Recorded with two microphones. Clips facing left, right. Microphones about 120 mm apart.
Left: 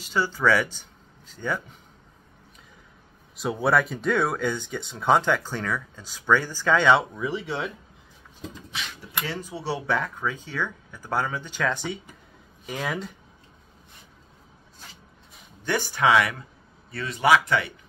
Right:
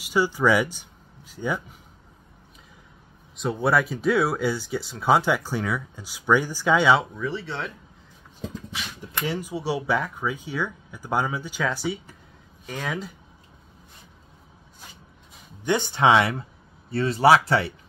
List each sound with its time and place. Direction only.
0.0 s speech: 15° right (ahead or behind)
3.3 s speech: centre (ahead or behind)
7.2 s speech: 15° left (ahead or behind)
9.2 s speech: 15° right (ahead or behind)
15.6 s speech: 20° right (ahead or behind)